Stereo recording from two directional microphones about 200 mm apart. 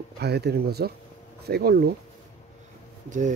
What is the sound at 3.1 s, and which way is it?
Speech, 40° right (ahead or behind).